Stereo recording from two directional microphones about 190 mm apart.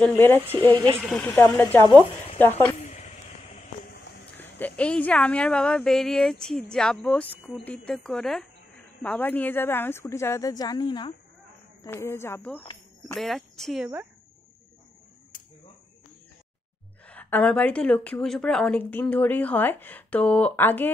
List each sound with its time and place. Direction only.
0.0 s a woman's voice: 5° left (ahead or behind)
2.8 s a sound: 35° left (ahead or behind)
4.4 s a woman's voice: 10° left (ahead or behind)
17.0 s a woman's voice: 10° left (ahead or behind)